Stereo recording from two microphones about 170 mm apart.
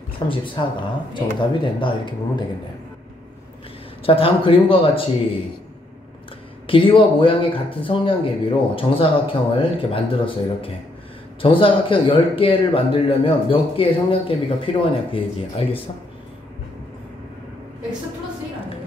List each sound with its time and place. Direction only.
0.2 s speech: 25° left (ahead or behind)
4.0 s speech: 35° left (ahead or behind)
6.7 s speech: 30° left (ahead or behind)